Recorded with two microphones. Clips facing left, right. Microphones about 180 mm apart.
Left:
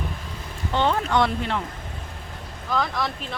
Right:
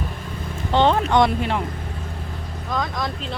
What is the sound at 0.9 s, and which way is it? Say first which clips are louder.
Speech: right 3 dB; 15° right (ahead or behind).